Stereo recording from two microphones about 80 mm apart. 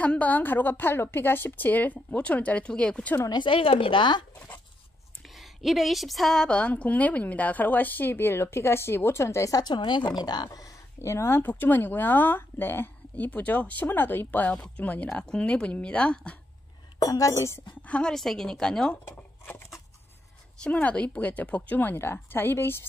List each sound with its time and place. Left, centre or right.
0.0 s a woman's voice: centre
3.2 s a woman's voice: left
3.4 s speech: left
5.2 s a woman's voice: centre; by 9.5 s left
9.5 s a woman's voice: left
11.0 s a woman's voice: left; by 16.3 s centre
17.0 s speech: left
17.8 s speech: centre
18.1 s speech: centre
19.1 s a sound: left
20.6 s a woman's voice: centre